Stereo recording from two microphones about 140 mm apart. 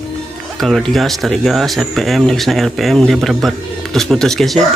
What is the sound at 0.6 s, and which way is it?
Speech, centre (ahead or behind).